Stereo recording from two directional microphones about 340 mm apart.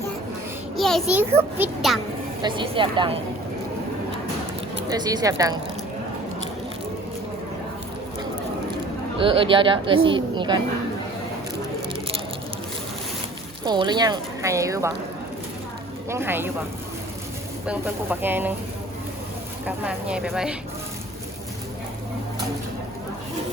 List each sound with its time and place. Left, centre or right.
0.8 s a child's voice: centre
2.4 s a woman's voice: centre
4.8 s a woman's voice: centre
9.1 s a woman's voice: centre
13.7 s a woman's voice: centre
16.0 s a woman's voice: centre
17.7 s a child's voice: centre
19.6 s a child's voice: centre